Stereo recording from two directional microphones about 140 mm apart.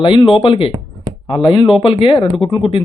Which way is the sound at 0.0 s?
35° left (ahead or behind).